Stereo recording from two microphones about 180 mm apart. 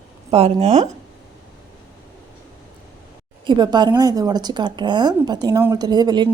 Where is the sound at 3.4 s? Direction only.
25° right (ahead or behind).